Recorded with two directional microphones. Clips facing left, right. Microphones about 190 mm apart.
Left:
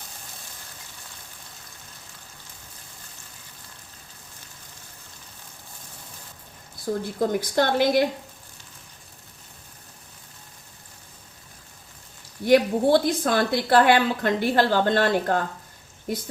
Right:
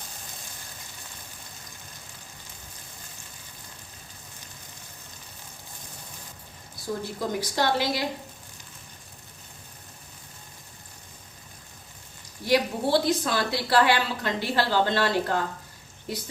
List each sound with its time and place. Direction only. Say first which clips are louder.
7.2 s a woman's voice: left 6 dB; 50° left (ahead or behind)
12.5 s a woman's voice: left 6 dB; 50° left (ahead or behind)